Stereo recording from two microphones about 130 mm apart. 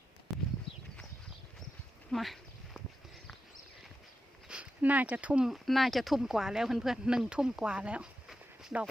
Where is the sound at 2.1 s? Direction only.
Centre (ahead or behind).